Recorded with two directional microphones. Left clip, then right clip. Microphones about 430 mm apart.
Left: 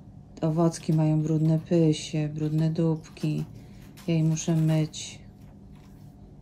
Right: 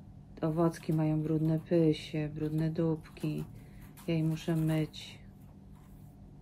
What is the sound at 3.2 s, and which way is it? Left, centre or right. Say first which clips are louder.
Speech: left 6 dB; left.